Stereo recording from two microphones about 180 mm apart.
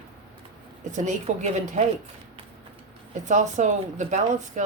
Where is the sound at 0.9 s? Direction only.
40° right (ahead or behind).